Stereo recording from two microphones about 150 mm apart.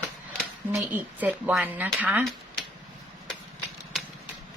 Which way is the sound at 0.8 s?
10° right (ahead or behind).